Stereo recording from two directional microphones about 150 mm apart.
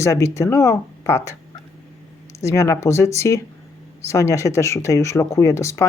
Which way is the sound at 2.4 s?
20° left (ahead or behind).